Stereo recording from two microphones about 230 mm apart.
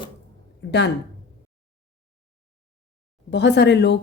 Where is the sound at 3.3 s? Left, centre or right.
Left.